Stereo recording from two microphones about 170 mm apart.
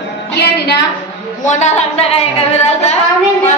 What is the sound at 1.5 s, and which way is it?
Speech, 40° left (ahead or behind).